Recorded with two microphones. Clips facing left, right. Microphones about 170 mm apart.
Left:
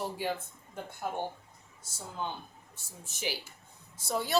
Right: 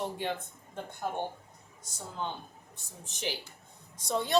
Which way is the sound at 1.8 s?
10° left (ahead or behind).